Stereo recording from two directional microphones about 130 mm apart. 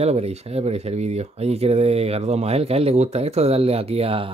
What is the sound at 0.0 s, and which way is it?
Speech, 55° right (ahead or behind).